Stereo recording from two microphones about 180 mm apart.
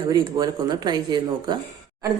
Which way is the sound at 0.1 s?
20° right (ahead or behind).